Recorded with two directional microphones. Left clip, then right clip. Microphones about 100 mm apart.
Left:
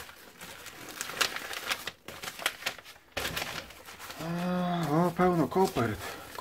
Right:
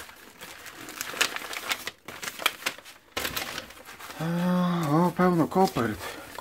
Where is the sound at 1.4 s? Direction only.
30° right (ahead or behind).